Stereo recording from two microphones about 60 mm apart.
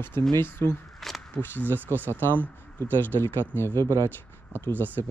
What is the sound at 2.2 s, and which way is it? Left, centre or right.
Speech, left.